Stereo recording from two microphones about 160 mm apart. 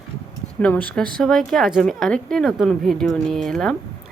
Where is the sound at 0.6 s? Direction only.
10° left (ahead or behind).